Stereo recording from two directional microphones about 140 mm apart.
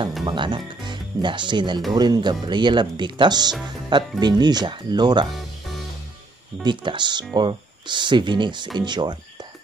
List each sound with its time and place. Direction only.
0.2 s speech: 35° right (ahead or behind)
6.6 s speech: 35° right (ahead or behind)